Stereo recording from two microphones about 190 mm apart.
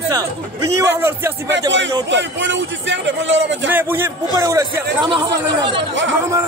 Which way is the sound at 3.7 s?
10° right (ahead or behind).